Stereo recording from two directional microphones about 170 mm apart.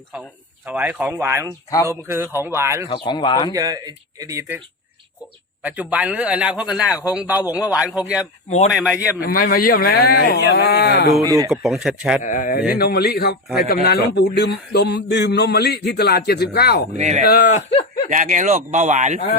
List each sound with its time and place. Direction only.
0.6 s a man's voice: 10° right (ahead or behind)
2.9 s speech: 25° left (ahead or behind)
3.5 s speech: 20° right (ahead or behind)
5.6 s a man's voice: 10° right (ahead or behind)
9.2 s speech: 60° left (ahead or behind); by 11.1 s 75° left (ahead or behind)
11.2 s speech: 20° right (ahead or behind)
11.5 s speech: centre (ahead or behind)
12.2 s speech: 50° left (ahead or behind)
12.7 s speech: 65° left (ahead or behind)
16.9 s speech: 45° right (ahead or behind)
17.2 s speech: 60° left (ahead or behind)
17.5 s speech: 35° left (ahead or behind)
18.1 s speech: 50° right (ahead or behind)